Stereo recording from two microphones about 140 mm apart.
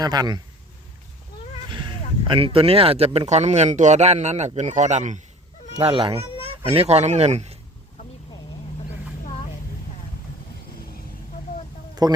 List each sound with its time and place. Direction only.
0.0 s a man's voice: 30° right (ahead or behind)
2.2 s speech: 40° right (ahead or behind); by 5.2 s 60° right (ahead or behind)
5.7 s speech: 40° right (ahead or behind)
12.0 s a man's voice: 25° right (ahead or behind)